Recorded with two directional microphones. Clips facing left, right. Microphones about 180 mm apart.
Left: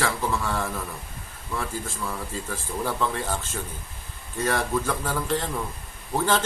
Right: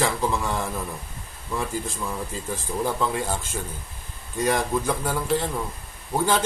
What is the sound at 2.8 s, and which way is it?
Speech, 15° right (ahead or behind).